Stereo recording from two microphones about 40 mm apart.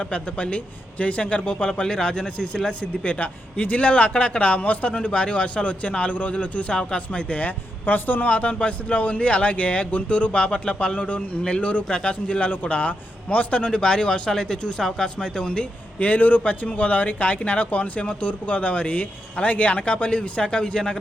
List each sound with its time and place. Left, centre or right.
0.0 s a man's voice: left
3.0 s a man's voice: left
7.9 s a man's voice: left
13.7 s a man's voice: left
16.0 s a man's voice: left
18.0 s a man's voice: left